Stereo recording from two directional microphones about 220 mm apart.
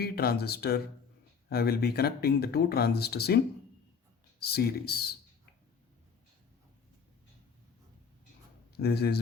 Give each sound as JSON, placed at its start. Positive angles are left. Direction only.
{"t": 0.0, "sound": "speech", "side_deg": 45}
{"t": 8.8, "sound": "speech", "side_deg": 45}